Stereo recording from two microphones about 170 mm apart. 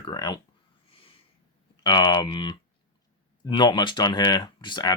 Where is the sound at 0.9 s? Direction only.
35° left (ahead or behind).